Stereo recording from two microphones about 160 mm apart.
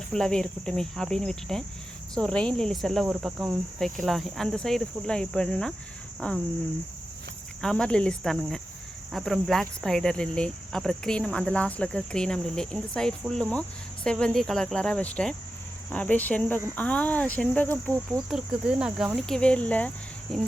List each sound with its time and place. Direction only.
0.1 s speech: 5° left (ahead or behind)
7.6 s speech: 5° left (ahead or behind)
18.3 s speech: 5° right (ahead or behind)